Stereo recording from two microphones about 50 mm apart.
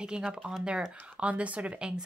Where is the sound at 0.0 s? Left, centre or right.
Centre.